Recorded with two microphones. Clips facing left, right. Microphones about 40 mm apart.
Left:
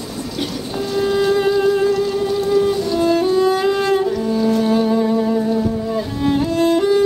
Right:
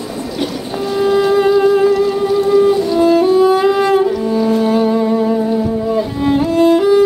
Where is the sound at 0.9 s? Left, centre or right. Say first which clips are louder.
Right 4 dB; centre.